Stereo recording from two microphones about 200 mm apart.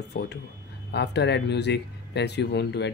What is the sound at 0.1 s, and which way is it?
Speech, 55° left (ahead or behind).